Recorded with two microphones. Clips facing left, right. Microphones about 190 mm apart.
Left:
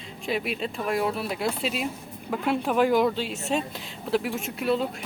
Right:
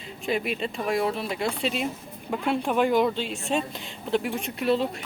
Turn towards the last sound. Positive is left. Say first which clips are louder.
# right 1 dB
turn(degrees=0)  # may be behind; listen again after turning